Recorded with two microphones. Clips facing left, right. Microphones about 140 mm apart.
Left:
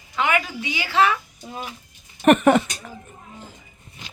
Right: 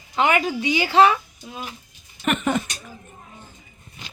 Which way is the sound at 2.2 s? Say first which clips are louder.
Left 8 dB; 55° left (ahead or behind).